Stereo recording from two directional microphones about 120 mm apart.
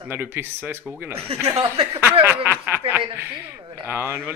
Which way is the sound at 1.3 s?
60° right (ahead or behind).